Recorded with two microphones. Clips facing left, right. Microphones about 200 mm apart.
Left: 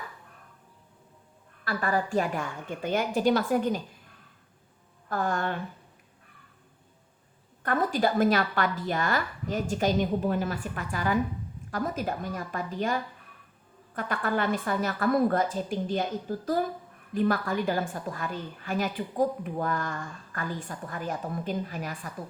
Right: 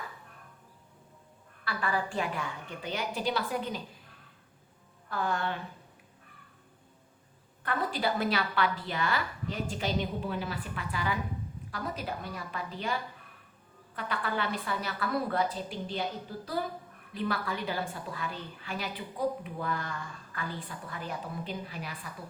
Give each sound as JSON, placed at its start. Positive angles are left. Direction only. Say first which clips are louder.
{"t": 1.6, "sound": "a woman's voice", "louder": "left 4 dB", "side_deg": 45}
{"t": 5.0, "sound": "a woman's voice", "louder": "left 3 dB", "side_deg": 45}
{"t": 7.6, "sound": "a woman's voice", "louder": "left 5 dB", "side_deg": 45}